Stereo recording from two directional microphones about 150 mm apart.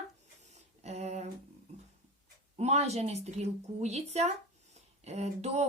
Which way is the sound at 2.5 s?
45° right (ahead or behind).